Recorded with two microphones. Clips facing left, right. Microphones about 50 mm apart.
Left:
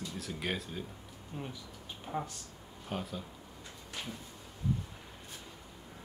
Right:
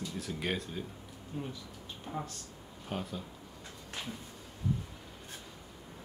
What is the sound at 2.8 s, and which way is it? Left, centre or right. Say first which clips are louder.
Speech: even; centre.